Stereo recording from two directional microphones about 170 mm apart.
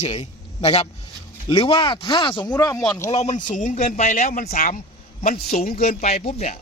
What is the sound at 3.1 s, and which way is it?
A man's voice, 40° left (ahead or behind).